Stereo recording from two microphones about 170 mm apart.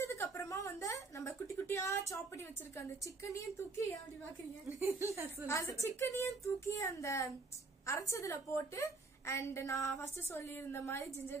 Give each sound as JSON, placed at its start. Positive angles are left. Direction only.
{"t": 0.0, "sound": "a woman's voice", "side_deg": 15}
{"t": 4.6, "sound": "a woman's voice", "side_deg": -15}
{"t": 5.5, "sound": "a woman's voice", "side_deg": 15}